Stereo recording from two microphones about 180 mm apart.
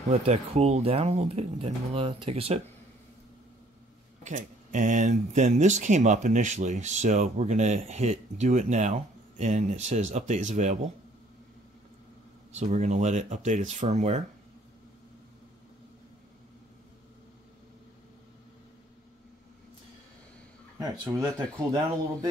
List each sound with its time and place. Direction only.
0.1 s speech: 35° right (ahead or behind)
4.2 s speech: 45° right (ahead or behind)
12.5 s speech: 40° right (ahead or behind)
21.0 s speech: 20° right (ahead or behind)